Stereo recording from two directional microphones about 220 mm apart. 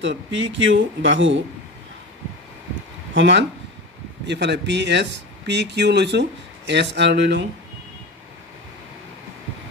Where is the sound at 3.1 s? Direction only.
55° right (ahead or behind).